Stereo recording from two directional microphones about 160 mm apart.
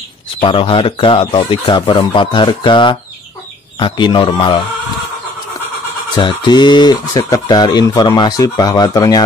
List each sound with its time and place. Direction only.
0.4 s speech: 35° left (ahead or behind)
6.1 s speech: 30° left (ahead or behind)